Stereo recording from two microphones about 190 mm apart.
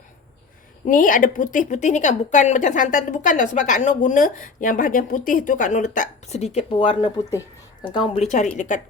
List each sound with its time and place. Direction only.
0.9 s a woman's voice: 45° left (ahead or behind)